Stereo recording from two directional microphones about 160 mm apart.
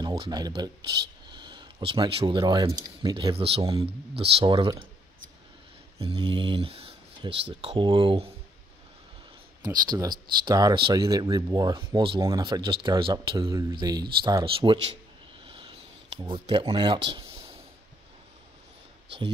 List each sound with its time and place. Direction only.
0.0 s speech: 25° right (ahead or behind)
5.9 s speech: 30° right (ahead or behind)
9.6 s speech: 25° right (ahead or behind)
15.4 s a sound: 35° right (ahead or behind)
16.3 s speech: 30° right (ahead or behind)